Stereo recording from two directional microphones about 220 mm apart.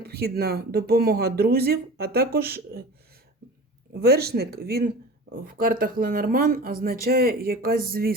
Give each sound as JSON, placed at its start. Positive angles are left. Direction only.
{"t": 0.0, "sound": "speech", "side_deg": -45}
{"t": 4.0, "sound": "speech", "side_deg": -45}